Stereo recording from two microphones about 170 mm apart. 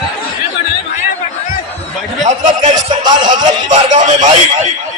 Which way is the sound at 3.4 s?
45° right (ahead or behind).